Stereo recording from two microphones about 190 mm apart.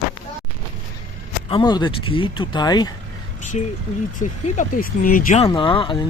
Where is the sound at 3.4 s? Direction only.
35° left (ahead or behind).